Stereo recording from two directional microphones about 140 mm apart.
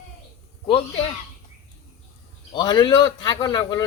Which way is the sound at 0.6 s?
40° left (ahead or behind).